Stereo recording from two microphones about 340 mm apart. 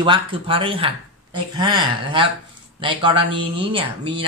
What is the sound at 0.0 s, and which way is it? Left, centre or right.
Speech, centre.